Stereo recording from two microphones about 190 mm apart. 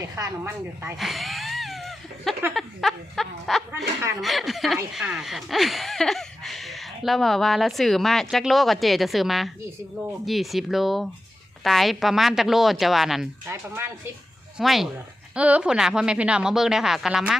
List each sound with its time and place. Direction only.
0.2 s a woman's voice: 15° right (ahead or behind)
0.9 s a sound: centre (ahead or behind)
2.6 s speech: centre (ahead or behind)
13.5 s a woman's voice: 10° right (ahead or behind)
14.6 s speech: centre (ahead or behind)